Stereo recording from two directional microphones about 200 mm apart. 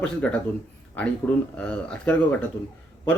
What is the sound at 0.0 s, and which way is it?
Speech, 5° left (ahead or behind).